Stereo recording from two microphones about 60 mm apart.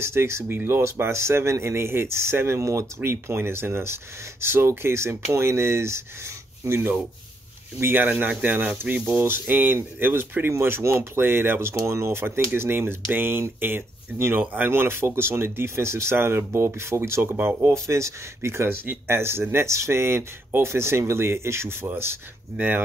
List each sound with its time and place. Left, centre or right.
0.0 s speech: right
3.0 s speech: right
7.8 s speech: right
10.6 s speech: right
11.1 s speech: right
14.4 s speech: right
14.7 s speech: right
17.8 s speech: right